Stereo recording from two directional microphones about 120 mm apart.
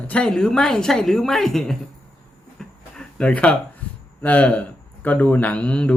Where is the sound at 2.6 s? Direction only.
5° left (ahead or behind).